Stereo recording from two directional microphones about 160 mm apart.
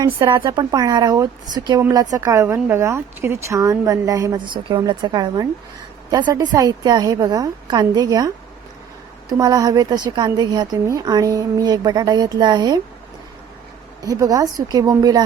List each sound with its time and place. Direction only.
0.3 s a woman's voice: 30° right (ahead or behind)
9.4 s a woman's voice: 25° right (ahead or behind)
14.0 s a woman's voice: 20° right (ahead or behind)